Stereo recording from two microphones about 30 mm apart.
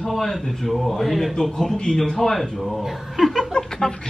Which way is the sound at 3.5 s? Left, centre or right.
Left.